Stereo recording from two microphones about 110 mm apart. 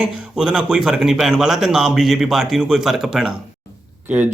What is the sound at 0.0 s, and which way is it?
Speech, 5° right (ahead or behind).